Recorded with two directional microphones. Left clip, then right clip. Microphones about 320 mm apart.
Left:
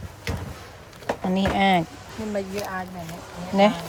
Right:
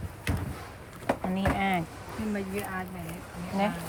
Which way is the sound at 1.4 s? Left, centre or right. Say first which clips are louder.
Left 10 dB; centre.